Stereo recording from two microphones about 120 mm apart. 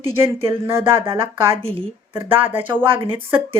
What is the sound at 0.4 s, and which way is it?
Speech, 20° right (ahead or behind).